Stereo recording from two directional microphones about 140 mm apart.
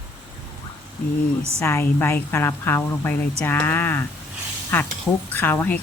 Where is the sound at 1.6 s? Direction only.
20° left (ahead or behind).